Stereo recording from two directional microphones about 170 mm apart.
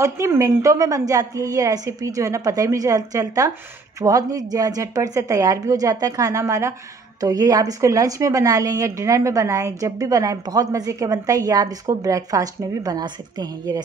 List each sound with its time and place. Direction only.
0.0 s a woman's voice: 15° right (ahead or behind)